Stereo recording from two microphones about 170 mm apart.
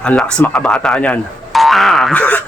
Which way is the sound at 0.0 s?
5° left (ahead or behind).